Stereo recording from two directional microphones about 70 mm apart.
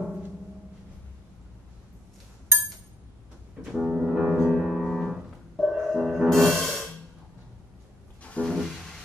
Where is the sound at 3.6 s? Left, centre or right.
Centre.